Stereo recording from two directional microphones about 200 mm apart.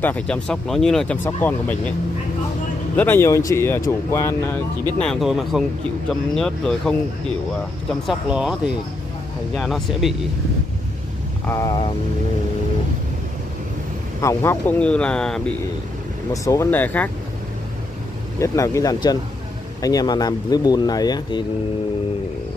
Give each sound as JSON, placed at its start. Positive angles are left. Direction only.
{"t": 0.0, "sound": "speech", "side_deg": 5}
{"t": 3.0, "sound": "speech", "side_deg": 10}
{"t": 5.0, "sound": "speech", "side_deg": 0}
{"t": 8.1, "sound": "speech", "side_deg": -5}
{"t": 11.4, "sound": "speech", "side_deg": 15}
{"t": 14.2, "sound": "speech", "side_deg": 15}
{"t": 18.4, "sound": "speech", "side_deg": 15}